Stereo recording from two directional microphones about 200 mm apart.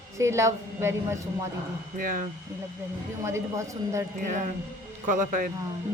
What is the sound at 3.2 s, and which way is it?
Speech, 15° right (ahead or behind).